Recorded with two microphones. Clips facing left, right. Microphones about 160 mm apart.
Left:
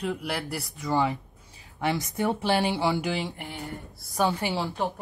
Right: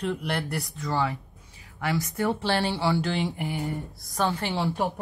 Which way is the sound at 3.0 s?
Centre (ahead or behind).